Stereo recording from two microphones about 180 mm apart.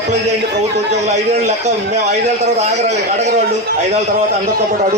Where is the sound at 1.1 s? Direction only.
40° right (ahead or behind).